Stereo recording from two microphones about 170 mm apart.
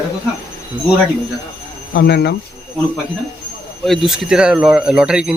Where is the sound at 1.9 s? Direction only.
75° left (ahead or behind).